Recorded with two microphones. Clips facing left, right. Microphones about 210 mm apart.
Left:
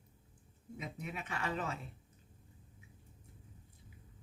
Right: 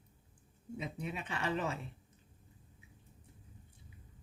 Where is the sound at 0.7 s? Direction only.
30° right (ahead or behind).